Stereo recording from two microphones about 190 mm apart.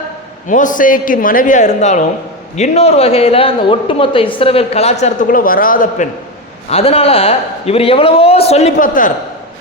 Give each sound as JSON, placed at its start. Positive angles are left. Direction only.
{"t": 0.4, "sound": "a woman's voice", "side_deg": 40}
{"t": 6.7, "sound": "a woman's voice", "side_deg": 30}